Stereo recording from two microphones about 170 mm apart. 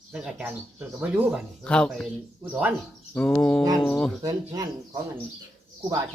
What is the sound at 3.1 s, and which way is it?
Bird, 5° left (ahead or behind).